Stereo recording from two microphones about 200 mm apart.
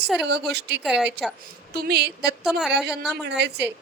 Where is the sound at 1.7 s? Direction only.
55° right (ahead or behind).